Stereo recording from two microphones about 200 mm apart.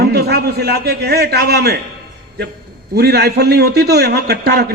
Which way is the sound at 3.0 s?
55° right (ahead or behind).